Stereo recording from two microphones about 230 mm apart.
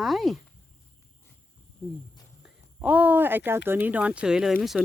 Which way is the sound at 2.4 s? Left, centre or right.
Centre.